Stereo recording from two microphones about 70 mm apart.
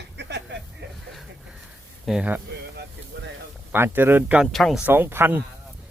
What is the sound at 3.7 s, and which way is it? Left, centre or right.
Speech, right.